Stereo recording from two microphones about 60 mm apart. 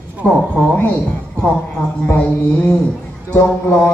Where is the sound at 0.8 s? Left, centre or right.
Left.